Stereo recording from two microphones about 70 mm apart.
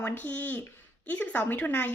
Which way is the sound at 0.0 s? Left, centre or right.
Left.